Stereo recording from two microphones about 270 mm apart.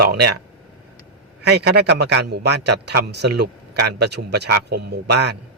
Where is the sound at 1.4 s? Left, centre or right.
Right.